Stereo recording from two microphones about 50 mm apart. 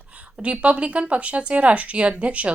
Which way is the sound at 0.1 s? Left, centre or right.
Right.